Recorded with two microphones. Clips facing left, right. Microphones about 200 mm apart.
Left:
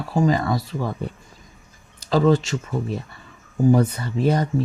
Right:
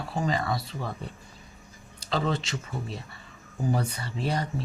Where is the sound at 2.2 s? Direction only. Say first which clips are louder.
Left 11 dB; 45° left (ahead or behind).